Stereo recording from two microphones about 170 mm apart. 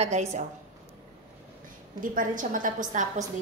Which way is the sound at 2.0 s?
55° right (ahead or behind).